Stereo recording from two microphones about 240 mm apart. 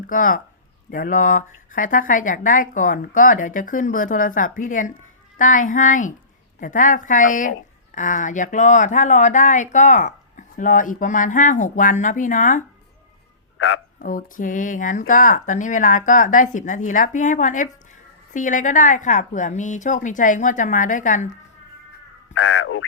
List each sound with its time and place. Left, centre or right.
0.1 s speech: left
14.0 s speech: left
22.4 s a sound: left